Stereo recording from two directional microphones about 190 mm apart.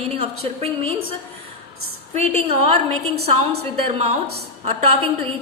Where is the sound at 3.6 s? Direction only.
30° right (ahead or behind).